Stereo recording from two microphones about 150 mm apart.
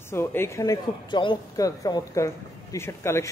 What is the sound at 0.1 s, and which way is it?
A man's voice, 15° left (ahead or behind).